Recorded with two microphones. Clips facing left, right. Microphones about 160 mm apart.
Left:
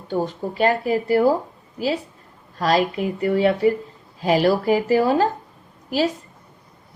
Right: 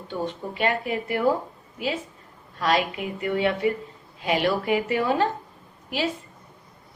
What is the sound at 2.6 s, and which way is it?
Speech, 35° left (ahead or behind).